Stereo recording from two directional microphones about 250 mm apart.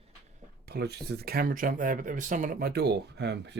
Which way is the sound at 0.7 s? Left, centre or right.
Right.